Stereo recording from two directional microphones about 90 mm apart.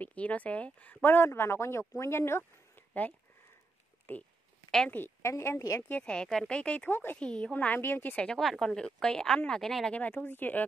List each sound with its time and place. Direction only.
0.0 s speech: 15° left (ahead or behind)
2.9 s speech: 20° left (ahead or behind)
4.6 s a woman's voice: 5° left (ahead or behind)
4.9 s a woman's voice: 25° left (ahead or behind)
5.9 s a woman's voice: 15° left (ahead or behind)
9.9 s speech: 20° left (ahead or behind)